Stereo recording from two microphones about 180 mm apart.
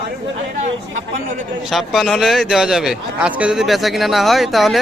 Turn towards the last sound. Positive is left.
turn(degrees=0)  # may be behind; listen again after turning